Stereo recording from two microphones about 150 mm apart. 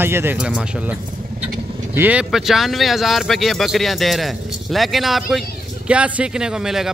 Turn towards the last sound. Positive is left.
turn(degrees=-5)  # may be behind; listen again after turning